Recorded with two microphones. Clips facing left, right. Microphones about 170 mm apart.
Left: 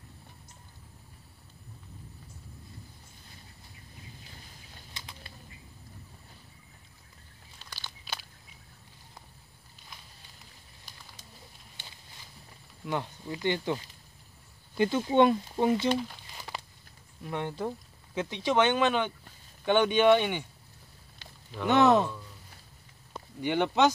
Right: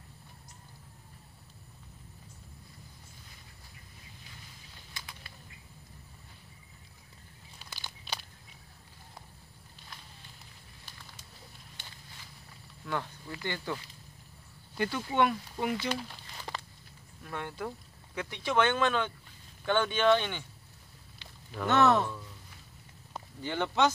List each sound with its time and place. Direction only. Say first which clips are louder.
4.9 s bird flight: left 1 dB; 30° left (ahead or behind)
7.5 s a sound: even; 10° right (ahead or behind)
12.8 s speech: left 3 dB; 20° left (ahead or behind)
14.8 s speech: left 6 dB; 20° left (ahead or behind)
17.2 s speech: left 5 dB; 20° left (ahead or behind)
21.6 s speech: left 3 dB; 15° left (ahead or behind)
23.4 s speech: left 4 dB; 15° left (ahead or behind)